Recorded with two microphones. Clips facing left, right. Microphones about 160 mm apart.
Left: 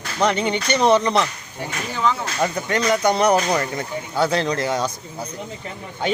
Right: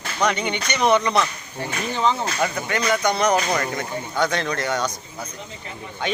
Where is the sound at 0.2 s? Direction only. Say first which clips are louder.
Left 3 dB; 25° left (ahead or behind).